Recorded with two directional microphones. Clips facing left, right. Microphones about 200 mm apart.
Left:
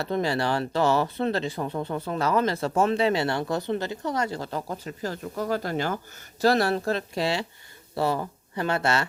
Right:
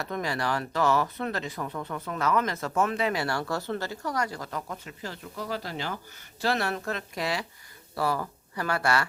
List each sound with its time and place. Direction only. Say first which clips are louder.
0.0 s speech: left 5 dB; 30° left (ahead or behind); by 6.0 s 50° left (ahead or behind)
6.4 s speech: left 7 dB; 35° left (ahead or behind)